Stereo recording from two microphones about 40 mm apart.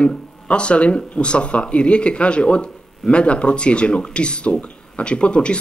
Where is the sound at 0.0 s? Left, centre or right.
Left.